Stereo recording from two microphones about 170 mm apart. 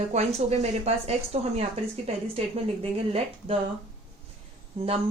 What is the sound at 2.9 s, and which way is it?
Speech, 35° right (ahead or behind).